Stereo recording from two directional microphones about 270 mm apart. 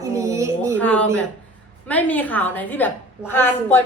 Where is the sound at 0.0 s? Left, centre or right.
Centre.